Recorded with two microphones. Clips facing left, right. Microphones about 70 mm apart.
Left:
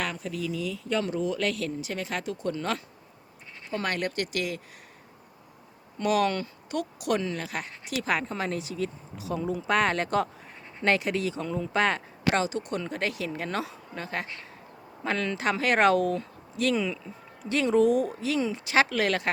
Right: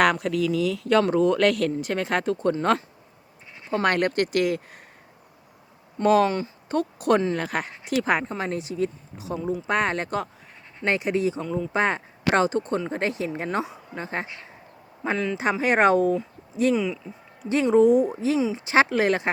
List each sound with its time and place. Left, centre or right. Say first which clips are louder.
0.0 s speech: right 11 dB; right
6.0 s speech: right 6 dB; right
6.2 s speech: right 3 dB; right
6.7 s speech: right 7 dB; right
8.2 s speech: right 2 dB; right
9.3 s speech: right 1 dB; centre
11.3 s speech: right 3 dB; centre
11.7 s speech: right 1 dB; centre
12.4 s speech: right 6 dB; right
15.0 s speech: right 3 dB; centre
15.6 s speech: right 3 dB; right
16.7 s speech: right 3 dB; centre
17.5 s speech: right 5 dB; right